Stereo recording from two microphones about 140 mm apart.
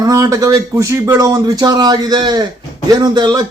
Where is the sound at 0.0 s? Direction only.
25° right (ahead or behind).